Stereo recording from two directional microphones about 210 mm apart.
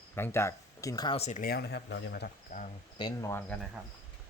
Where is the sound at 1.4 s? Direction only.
50° left (ahead or behind).